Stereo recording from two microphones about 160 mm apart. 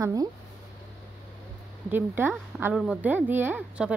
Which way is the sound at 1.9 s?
15° right (ahead or behind).